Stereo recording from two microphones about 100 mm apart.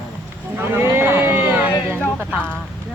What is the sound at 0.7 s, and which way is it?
Speech, 25° right (ahead or behind).